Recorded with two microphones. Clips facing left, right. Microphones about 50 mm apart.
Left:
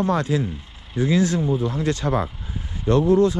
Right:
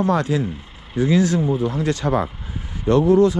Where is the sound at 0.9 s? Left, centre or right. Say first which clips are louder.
Right 2 dB; right.